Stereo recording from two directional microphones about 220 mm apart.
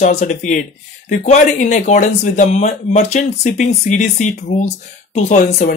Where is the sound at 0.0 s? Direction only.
30° left (ahead or behind).